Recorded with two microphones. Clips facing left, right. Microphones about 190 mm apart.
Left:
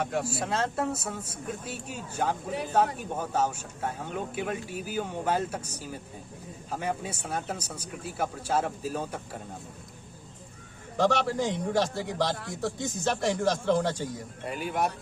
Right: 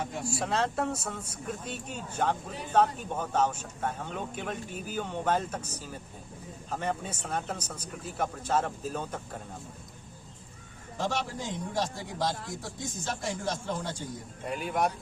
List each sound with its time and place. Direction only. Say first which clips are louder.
0.0 s a man's voice: left 6 dB; 70° left (ahead or behind)
0.3 s speech: even; centre (ahead or behind)
10.9 s a man's voice: left 7 dB; 75° left (ahead or behind)
14.4 s speech: even; centre (ahead or behind)